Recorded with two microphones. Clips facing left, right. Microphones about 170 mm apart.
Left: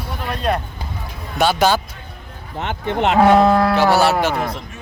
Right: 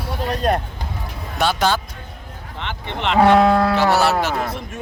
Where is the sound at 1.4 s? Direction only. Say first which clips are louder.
Left 3 dB; 5° left (ahead or behind).